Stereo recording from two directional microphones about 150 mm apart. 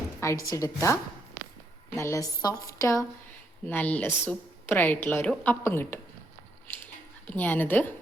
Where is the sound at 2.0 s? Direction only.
20° left (ahead or behind).